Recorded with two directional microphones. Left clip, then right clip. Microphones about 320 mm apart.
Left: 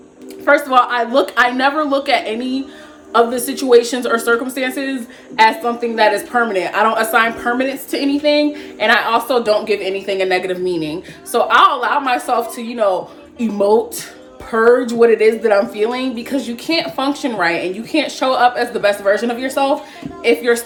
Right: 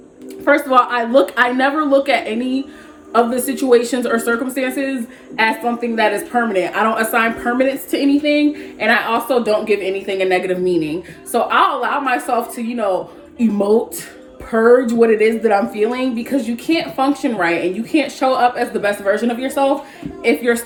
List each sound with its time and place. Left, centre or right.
0.4 s a woman's voice: centre